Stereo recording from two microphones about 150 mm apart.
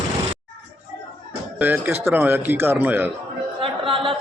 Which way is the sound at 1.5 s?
10° right (ahead or behind).